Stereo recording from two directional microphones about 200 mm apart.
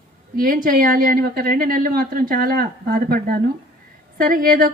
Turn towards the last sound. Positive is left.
turn(degrees=-45)  # may be behind; listen again after turning